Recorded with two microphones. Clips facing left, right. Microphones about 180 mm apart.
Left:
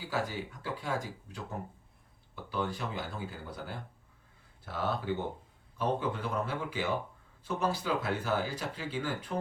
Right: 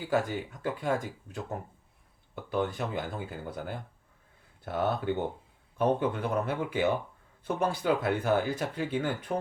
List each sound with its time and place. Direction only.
0.1 s speech: 50° right (ahead or behind)